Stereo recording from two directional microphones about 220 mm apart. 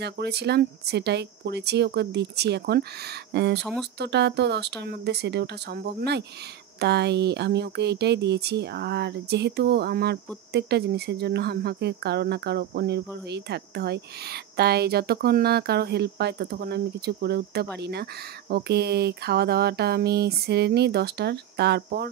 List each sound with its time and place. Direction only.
0.0 s speech: 50° right (ahead or behind)